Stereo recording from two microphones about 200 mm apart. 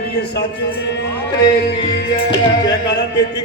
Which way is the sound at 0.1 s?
55° left (ahead or behind).